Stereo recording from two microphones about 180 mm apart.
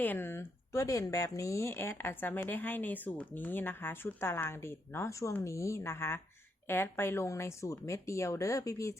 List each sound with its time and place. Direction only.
0.0 s speech: 10° left (ahead or behind)